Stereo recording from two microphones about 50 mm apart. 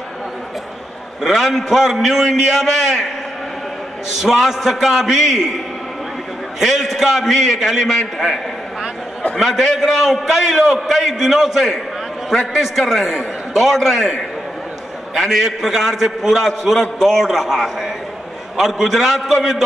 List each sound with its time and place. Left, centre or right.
1.2 s a man's voice: centre
4.2 s a man's voice: centre
6.6 s a man's voice: centre
9.4 s a man's voice: centre
15.1 s a man's voice: centre